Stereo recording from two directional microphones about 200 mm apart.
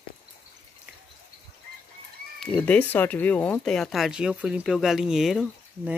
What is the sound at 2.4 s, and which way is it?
Speech, 5° left (ahead or behind).